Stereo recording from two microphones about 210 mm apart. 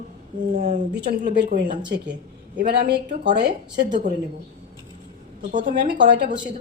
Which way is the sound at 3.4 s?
45° right (ahead or behind).